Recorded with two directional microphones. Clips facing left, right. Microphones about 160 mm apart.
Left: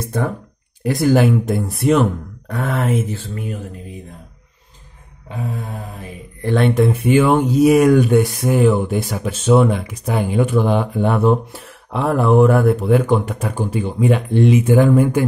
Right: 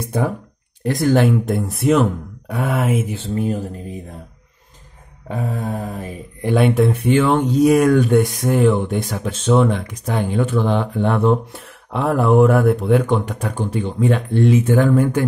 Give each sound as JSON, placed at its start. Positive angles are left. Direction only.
{"t": 0.0, "sound": "speech", "side_deg": -10}
{"t": 0.8, "sound": "speech", "side_deg": 5}
{"t": 3.3, "sound": "mantra", "side_deg": -35}
{"t": 5.3, "sound": "mantra", "side_deg": -40}
{"t": 6.4, "sound": "speech", "side_deg": -5}